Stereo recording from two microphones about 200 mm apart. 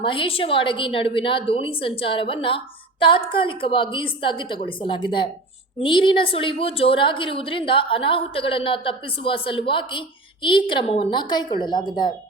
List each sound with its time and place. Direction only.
0.0 s a woman's voice: 25° left (ahead or behind)